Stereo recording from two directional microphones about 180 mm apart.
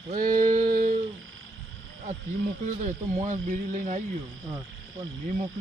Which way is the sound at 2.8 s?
40° right (ahead or behind).